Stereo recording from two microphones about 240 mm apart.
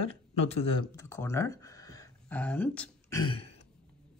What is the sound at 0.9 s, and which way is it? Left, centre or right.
Speech, centre.